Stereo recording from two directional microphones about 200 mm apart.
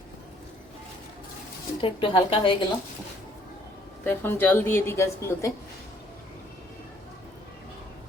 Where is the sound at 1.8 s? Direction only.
25° left (ahead or behind).